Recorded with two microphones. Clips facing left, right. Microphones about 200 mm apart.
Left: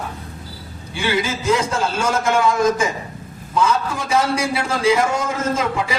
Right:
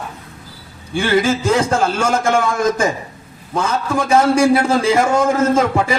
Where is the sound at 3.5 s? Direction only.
50° right (ahead or behind).